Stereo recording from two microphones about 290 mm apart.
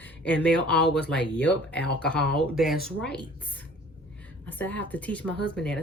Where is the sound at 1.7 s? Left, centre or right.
Left.